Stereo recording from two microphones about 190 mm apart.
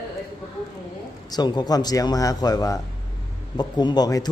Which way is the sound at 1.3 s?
20° left (ahead or behind).